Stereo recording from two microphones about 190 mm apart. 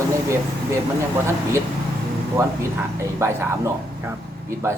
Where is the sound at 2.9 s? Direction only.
15° right (ahead or behind).